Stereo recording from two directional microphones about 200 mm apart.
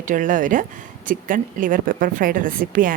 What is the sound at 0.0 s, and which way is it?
A woman's voice, 40° right (ahead or behind).